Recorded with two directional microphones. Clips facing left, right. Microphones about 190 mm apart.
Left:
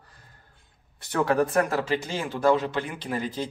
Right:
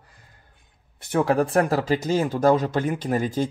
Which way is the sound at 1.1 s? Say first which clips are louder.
Right 3 dB; 25° right (ahead or behind).